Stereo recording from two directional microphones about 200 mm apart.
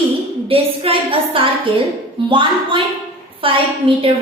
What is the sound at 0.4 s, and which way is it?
A woman's voice, 25° right (ahead or behind).